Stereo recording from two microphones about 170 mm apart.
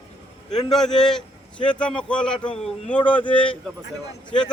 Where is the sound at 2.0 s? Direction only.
5° left (ahead or behind).